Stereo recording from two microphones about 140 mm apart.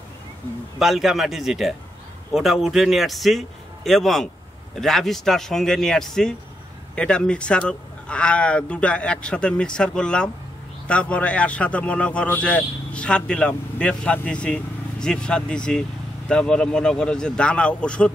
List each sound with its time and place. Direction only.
0.7 s a man's voice: centre (ahead or behind)